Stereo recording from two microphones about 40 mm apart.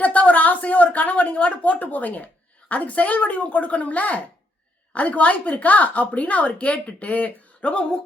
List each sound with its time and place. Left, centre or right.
0.0 s a woman's voice: left